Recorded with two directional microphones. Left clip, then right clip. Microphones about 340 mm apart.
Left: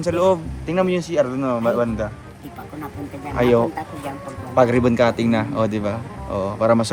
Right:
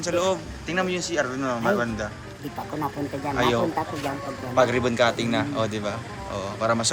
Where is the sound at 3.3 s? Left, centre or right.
Centre.